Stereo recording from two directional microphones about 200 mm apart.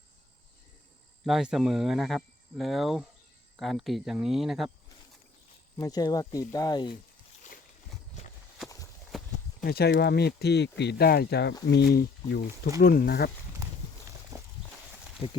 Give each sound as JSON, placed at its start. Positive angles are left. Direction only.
{"t": 1.2, "sound": "speech", "side_deg": -5}
{"t": 5.7, "sound": "speech", "side_deg": 20}
{"t": 9.6, "sound": "speech", "side_deg": 55}
{"t": 15.2, "sound": "speech", "side_deg": 30}